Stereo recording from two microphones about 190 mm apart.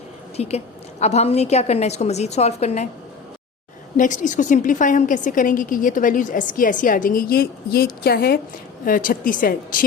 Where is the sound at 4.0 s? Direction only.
40° left (ahead or behind).